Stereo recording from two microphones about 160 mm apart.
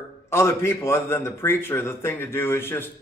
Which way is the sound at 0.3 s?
15° left (ahead or behind).